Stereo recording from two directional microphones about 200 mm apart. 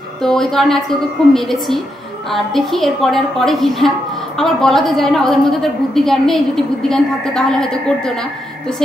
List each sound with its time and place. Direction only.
0.2 s a woman's voice: centre (ahead or behind)